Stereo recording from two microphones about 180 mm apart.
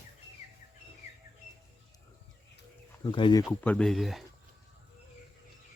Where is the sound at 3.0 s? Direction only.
25° left (ahead or behind).